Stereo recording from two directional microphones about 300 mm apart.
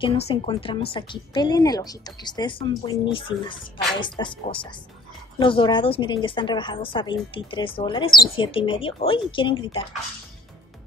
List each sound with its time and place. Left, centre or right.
0.0 s speech: centre